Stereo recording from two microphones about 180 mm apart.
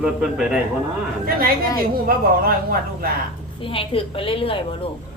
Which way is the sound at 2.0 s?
55° right (ahead or behind).